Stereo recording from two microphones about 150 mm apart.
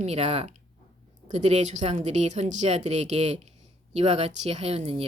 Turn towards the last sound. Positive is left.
turn(degrees=-45)  # may be behind; listen again after turning